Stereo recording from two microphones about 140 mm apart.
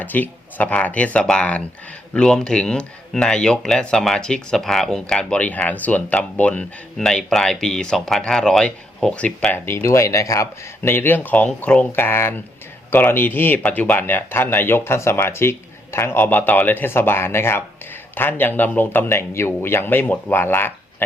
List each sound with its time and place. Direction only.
0.0 s speech: 10° left (ahead or behind)